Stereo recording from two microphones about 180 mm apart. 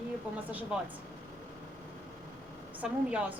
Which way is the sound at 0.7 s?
5° right (ahead or behind).